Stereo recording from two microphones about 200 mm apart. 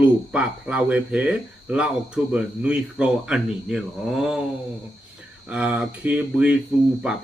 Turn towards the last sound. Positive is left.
turn(degrees=-5)  # may be behind; listen again after turning